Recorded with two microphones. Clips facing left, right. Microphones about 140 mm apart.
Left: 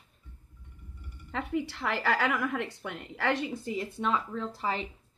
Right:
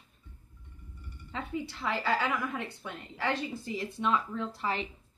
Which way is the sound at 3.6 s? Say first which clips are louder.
Left 2 dB; 50° left (ahead or behind).